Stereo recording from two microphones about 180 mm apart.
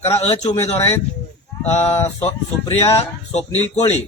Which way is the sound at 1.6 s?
35° left (ahead or behind).